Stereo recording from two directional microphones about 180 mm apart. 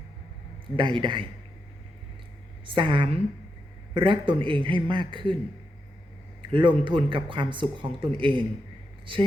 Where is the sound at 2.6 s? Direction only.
25° right (ahead or behind).